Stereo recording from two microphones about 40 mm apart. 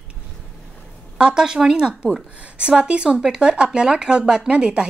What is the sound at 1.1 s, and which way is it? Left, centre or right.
A woman's voice, centre.